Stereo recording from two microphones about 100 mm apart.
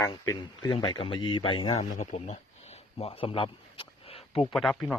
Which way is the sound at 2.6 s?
90° left.